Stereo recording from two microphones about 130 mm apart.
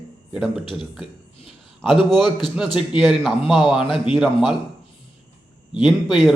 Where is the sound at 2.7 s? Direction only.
Centre (ahead or behind).